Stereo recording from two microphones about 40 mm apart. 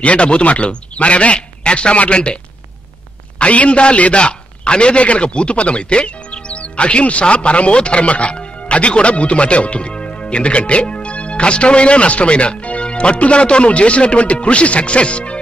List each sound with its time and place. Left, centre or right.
0.0 s speech: left
3.3 s a man's voice: left